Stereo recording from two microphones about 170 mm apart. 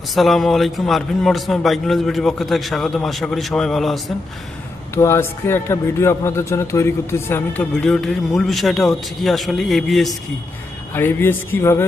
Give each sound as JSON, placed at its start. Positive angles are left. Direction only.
{"t": 0.1, "sound": "a man's voice", "side_deg": 0}
{"t": 4.9, "sound": "a man's voice", "side_deg": 15}
{"t": 10.9, "sound": "a man's voice", "side_deg": 10}